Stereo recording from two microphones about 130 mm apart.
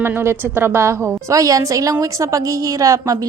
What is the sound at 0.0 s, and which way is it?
A woman's voice, 20° right (ahead or behind).